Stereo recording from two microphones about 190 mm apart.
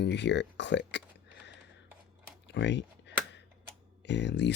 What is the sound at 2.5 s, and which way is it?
Speech, 65° left (ahead or behind).